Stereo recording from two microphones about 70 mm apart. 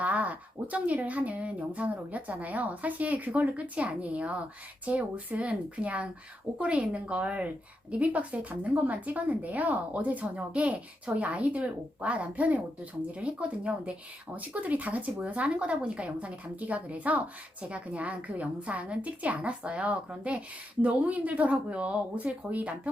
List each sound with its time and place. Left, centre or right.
0.0 s a woman's voice: right